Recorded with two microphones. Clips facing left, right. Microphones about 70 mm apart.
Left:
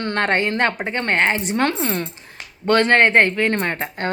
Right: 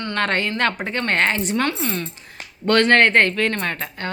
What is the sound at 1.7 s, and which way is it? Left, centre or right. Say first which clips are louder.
Speech: left 2 dB; left.